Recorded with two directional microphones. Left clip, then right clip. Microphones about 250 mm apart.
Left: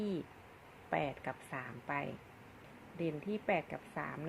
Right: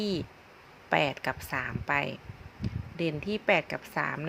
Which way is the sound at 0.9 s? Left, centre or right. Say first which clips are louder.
Right 10 dB; right.